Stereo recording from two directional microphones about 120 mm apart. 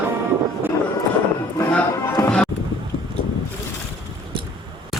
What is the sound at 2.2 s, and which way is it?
Music, 10° left (ahead or behind).